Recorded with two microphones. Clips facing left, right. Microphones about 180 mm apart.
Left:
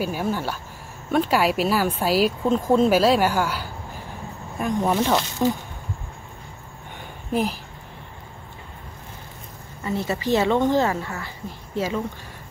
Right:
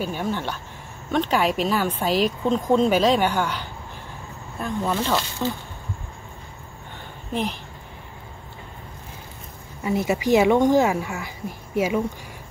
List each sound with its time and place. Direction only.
0.0 s speech: 5° left (ahead or behind)
7.3 s speech: 10° left (ahead or behind)
9.8 s speech: 10° right (ahead or behind)